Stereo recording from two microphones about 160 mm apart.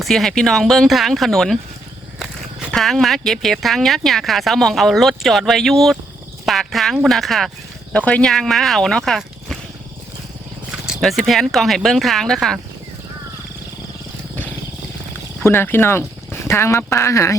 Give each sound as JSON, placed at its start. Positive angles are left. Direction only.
{"t": 0.0, "sound": "speech", "side_deg": 0}
{"t": 10.7, "sound": "speech", "side_deg": 0}
{"t": 15.4, "sound": "speech", "side_deg": 15}